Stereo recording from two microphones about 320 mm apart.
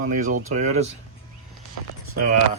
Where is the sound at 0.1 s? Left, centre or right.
Right.